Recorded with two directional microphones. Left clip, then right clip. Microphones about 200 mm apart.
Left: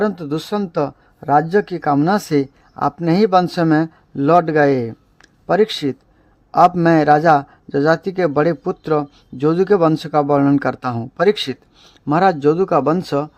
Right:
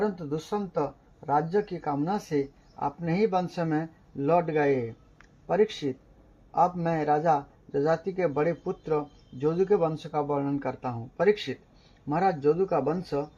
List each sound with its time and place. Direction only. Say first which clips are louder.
0.0 s a man's voice: left 10 dB; 50° left (ahead or behind)